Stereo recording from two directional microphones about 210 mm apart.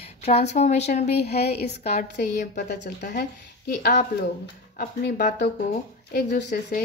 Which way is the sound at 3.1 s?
50° left (ahead or behind).